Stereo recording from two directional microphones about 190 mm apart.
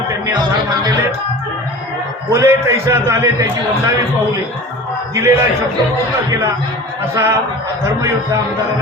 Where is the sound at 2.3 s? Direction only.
15° right (ahead or behind).